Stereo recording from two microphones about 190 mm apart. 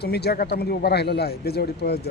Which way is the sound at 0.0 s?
60° left (ahead or behind).